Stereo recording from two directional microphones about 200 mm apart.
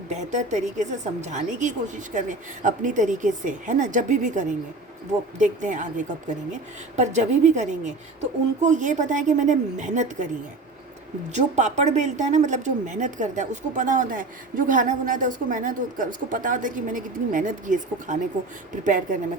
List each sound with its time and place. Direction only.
0.1 s a woman's voice: 35° right (ahead or behind)
11.3 s a woman's voice: 35° right (ahead or behind)